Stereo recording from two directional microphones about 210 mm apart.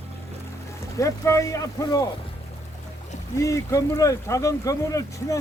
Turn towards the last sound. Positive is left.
turn(degrees=15)  # may be behind; listen again after turning